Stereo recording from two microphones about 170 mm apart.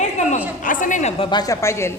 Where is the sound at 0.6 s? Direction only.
50° left (ahead or behind).